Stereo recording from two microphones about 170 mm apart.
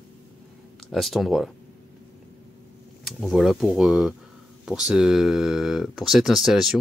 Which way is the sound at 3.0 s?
Centre (ahead or behind).